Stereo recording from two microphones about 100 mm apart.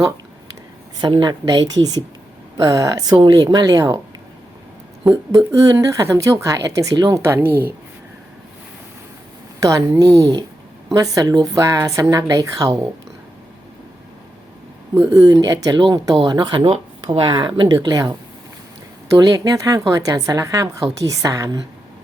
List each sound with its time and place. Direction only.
1.0 s a woman's voice: 45° right (ahead or behind)
5.5 s a woman's voice: 35° right (ahead or behind)
6.9 s a woman's voice: 45° right (ahead or behind)
7.2 s speech: 25° right (ahead or behind)
9.6 s a woman's voice: 35° right (ahead or behind)
14.9 s a woman's voice: 30° right (ahead or behind)